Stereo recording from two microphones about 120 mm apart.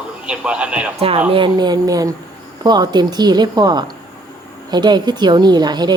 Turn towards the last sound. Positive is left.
turn(degrees=-35)  # may be behind; listen again after turning